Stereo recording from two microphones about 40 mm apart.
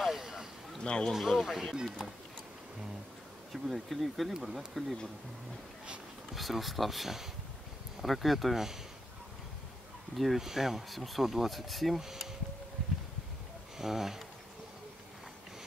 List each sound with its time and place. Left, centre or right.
0.0 s a sound: centre
0.8 s speech: left
1.1 s speech: centre
3.5 s speech: centre
6.3 s speech: centre
10.1 s speech: centre
13.7 s speech: centre